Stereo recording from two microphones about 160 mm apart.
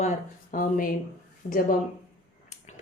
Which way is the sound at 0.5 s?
60° left (ahead or behind).